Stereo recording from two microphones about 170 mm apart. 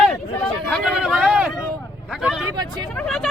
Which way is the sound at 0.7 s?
5° right (ahead or behind).